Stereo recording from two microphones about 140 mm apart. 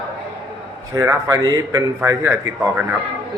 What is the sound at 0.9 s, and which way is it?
Speech, 20° right (ahead or behind).